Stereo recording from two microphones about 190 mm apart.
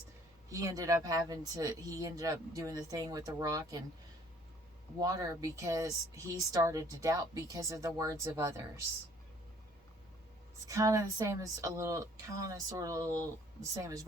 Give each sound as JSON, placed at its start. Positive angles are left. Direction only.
{"t": 0.5, "sound": "speech", "side_deg": -20}
{"t": 4.9, "sound": "speech", "side_deg": -20}
{"t": 10.7, "sound": "speech", "side_deg": -15}